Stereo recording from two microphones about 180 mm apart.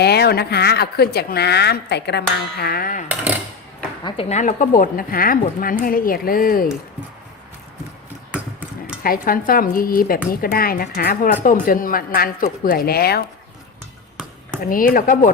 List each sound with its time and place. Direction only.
0.0 s a woman's voice: 65° left (ahead or behind)
4.0 s speech: 35° left (ahead or behind); by 6.7 s 55° left (ahead or behind)
9.0 s a woman's voice: 50° left (ahead or behind)
14.6 s speech: 50° left (ahead or behind)